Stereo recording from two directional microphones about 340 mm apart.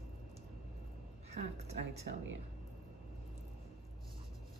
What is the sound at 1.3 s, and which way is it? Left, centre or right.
Speech, centre.